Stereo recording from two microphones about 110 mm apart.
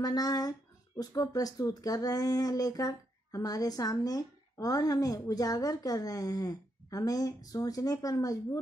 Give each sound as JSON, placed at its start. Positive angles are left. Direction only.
{"t": 0.0, "sound": "speech", "side_deg": 35}